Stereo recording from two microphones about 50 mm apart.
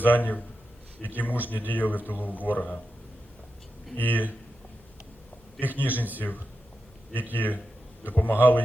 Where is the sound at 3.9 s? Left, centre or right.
Left.